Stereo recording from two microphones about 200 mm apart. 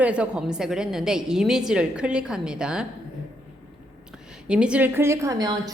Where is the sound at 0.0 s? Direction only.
5° right (ahead or behind).